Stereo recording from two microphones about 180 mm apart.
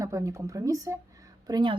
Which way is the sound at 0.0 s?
20° right (ahead or behind).